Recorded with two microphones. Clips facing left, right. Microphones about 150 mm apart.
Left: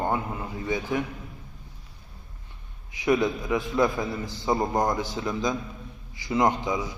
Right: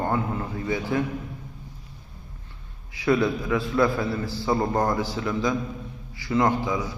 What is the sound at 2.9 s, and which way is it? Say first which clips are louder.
A man's voice: right 1 dB; 20° left (ahead or behind).